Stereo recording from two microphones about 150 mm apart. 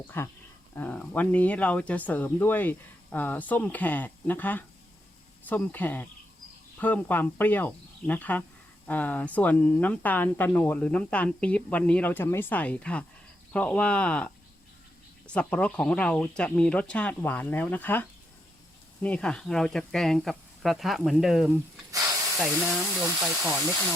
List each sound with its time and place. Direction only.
0.1 s speech: 15° left (ahead or behind); by 23.9 s centre (ahead or behind)